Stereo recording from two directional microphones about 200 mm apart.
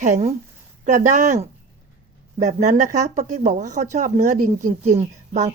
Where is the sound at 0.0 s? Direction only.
35° right (ahead or behind).